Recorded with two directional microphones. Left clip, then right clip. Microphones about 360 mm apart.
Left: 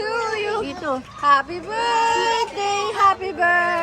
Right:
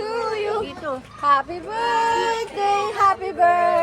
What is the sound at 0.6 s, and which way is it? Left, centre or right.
Speech, left.